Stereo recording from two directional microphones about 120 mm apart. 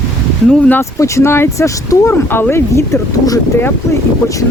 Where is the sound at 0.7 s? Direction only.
25° left (ahead or behind).